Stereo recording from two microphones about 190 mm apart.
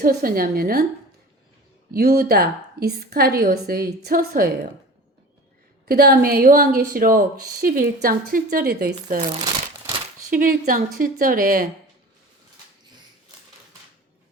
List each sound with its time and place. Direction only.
0.0 s a woman's voice: 50° right (ahead or behind)
1.9 s a woman's voice: 50° right (ahead or behind)
5.9 s a woman's voice: 50° right (ahead or behind)
9.5 s crumpling: 25° right (ahead or behind)
10.2 s a woman's voice: 45° right (ahead or behind)